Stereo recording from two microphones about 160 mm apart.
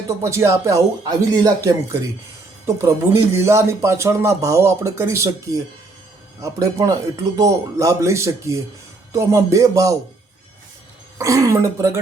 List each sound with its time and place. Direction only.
0.1 s speech: 15° right (ahead or behind)
11.2 s speech: 20° right (ahead or behind)